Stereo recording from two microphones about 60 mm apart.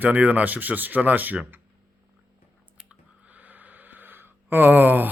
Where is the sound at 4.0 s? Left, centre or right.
Right.